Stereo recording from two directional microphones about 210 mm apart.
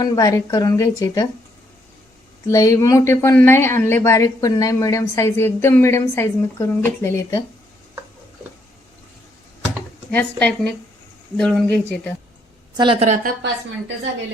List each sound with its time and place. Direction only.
0.0 s speech: 15° left (ahead or behind)
2.5 s speech: 15° left (ahead or behind)
10.1 s speech: 5° left (ahead or behind)
12.7 s a woman's voice: 25° right (ahead or behind)
13.2 s a woman's voice: 55° right (ahead or behind)